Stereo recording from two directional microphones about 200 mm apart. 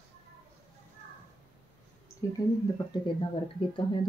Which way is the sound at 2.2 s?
15° left (ahead or behind).